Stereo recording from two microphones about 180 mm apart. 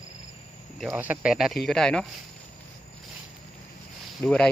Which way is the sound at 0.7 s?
5° right (ahead or behind).